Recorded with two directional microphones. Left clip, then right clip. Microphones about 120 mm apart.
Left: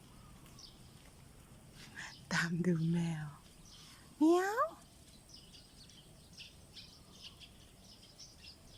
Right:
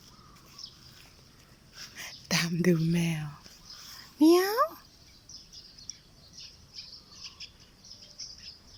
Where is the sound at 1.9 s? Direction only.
20° right (ahead or behind).